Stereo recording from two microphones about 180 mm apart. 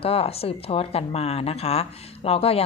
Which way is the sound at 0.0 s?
30° left (ahead or behind).